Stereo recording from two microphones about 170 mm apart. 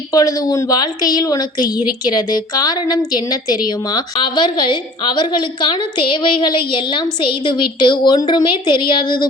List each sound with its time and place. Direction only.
0.1 s a woman's voice: 20° left (ahead or behind)